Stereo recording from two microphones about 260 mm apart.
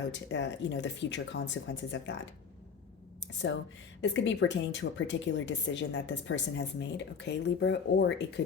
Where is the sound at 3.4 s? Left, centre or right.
Left.